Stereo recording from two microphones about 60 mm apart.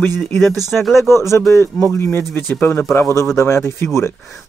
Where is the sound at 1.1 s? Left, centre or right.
Left.